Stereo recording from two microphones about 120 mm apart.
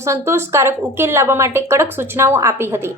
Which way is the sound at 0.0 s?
25° right (ahead or behind).